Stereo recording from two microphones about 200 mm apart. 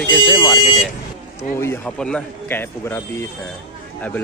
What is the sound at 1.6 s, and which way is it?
Speech, 10° left (ahead or behind).